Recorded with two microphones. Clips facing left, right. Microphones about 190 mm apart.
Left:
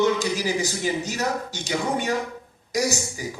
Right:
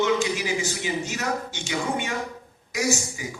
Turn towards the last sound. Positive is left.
turn(degrees=40)  # may be behind; listen again after turning